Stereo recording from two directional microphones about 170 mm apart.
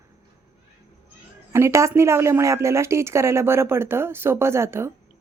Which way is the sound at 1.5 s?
15° right (ahead or behind).